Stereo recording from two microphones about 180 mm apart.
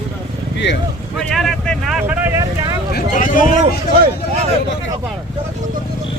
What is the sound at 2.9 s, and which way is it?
Speech, 50° left (ahead or behind).